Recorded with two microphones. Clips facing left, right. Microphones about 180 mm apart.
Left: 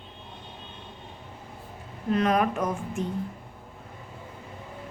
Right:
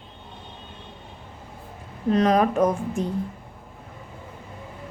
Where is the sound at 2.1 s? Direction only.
35° right (ahead or behind).